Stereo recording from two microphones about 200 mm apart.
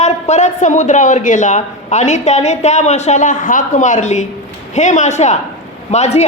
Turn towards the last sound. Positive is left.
turn(degrees=35)  # may be behind; listen again after turning